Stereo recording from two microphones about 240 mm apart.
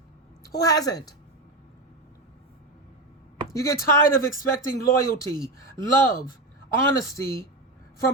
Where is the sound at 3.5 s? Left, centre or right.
Centre.